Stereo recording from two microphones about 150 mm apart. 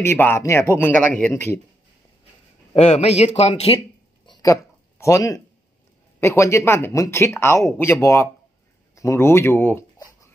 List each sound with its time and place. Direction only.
0.0 s speech: 15° left (ahead or behind)
2.7 s a man's voice: 50° left (ahead or behind)
4.3 s a sound: 20° left (ahead or behind)
6.1 s speech: 15° left (ahead or behind)